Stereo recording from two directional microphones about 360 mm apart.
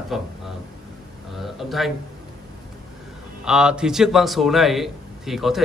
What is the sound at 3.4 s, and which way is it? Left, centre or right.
A man's voice, centre.